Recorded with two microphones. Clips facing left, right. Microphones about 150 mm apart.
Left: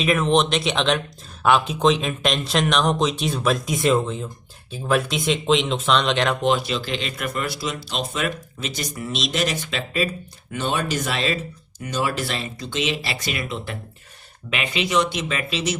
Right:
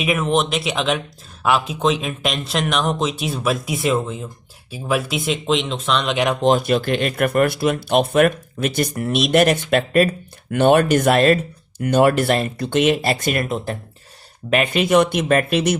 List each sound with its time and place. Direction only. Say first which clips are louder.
0.0 s speech: even; 10° right (ahead or behind)
6.4 s speech: right 5 dB; 45° right (ahead or behind)